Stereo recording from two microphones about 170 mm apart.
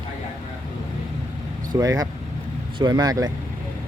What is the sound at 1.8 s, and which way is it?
Speech, 20° right (ahead or behind).